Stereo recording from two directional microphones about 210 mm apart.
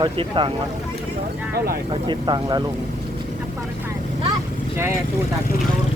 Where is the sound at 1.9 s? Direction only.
20° right (ahead or behind).